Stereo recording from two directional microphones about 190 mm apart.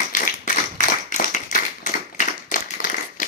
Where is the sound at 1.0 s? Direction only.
40° left (ahead or behind).